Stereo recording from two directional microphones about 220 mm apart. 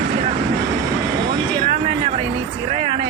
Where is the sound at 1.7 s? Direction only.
30° right (ahead or behind).